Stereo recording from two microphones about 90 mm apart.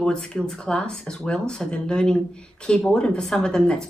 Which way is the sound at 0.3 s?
5° left (ahead or behind).